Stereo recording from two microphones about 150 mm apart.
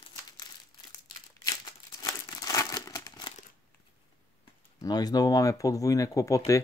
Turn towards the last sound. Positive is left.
turn(degrees=20)  # may be behind; listen again after turning